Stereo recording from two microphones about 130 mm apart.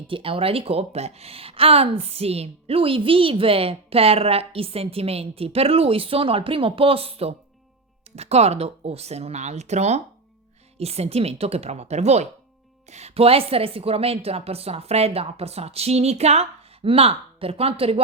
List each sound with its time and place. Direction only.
0.1 s a woman's voice: 45° right (ahead or behind)